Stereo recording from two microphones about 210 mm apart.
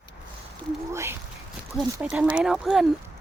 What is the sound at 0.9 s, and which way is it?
Speech, 10° right (ahead or behind).